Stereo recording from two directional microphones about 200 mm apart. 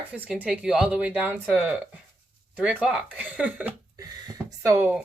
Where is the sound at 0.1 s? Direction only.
5° right (ahead or behind).